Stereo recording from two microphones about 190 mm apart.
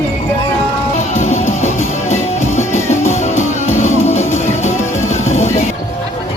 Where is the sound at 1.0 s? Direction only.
35° left (ahead or behind).